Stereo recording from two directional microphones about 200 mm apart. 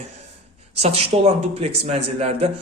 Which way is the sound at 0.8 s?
30° right (ahead or behind).